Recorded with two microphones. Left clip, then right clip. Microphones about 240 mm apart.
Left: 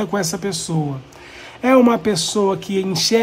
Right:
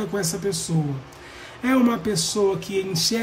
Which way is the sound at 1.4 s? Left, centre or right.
Centre.